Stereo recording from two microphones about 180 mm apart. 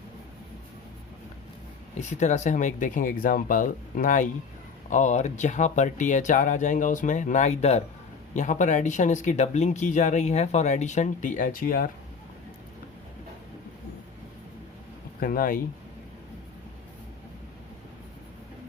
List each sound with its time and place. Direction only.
2.0 s speech: 40° left (ahead or behind)
15.2 s speech: 55° left (ahead or behind)